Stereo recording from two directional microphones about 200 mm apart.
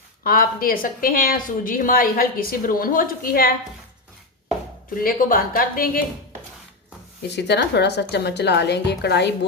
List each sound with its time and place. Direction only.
0.3 s a woman's voice: 45° left (ahead or behind)
4.9 s a woman's voice: 45° left (ahead or behind)
7.3 s a woman's voice: 60° left (ahead or behind)